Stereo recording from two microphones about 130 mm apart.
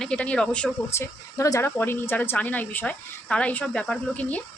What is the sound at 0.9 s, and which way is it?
Speech, 25° left (ahead or behind).